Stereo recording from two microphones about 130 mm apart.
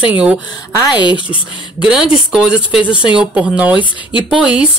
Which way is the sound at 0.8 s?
35° left (ahead or behind).